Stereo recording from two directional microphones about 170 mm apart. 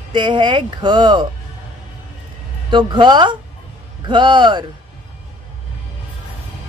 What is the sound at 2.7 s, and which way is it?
A woman's voice, 25° right (ahead or behind).